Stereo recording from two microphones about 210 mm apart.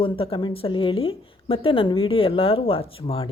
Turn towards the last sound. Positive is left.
turn(degrees=25)  # may be behind; listen again after turning